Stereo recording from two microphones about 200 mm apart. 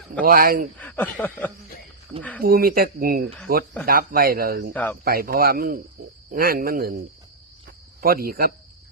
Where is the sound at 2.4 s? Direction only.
45° right (ahead or behind).